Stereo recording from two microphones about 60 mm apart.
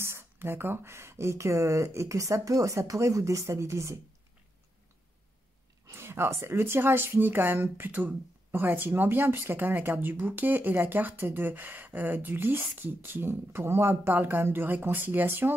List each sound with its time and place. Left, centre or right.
0.0 s speech: right
5.9 s speech: right